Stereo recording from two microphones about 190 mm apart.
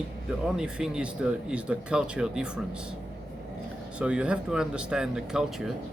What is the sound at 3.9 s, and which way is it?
Speech, 5° right (ahead or behind).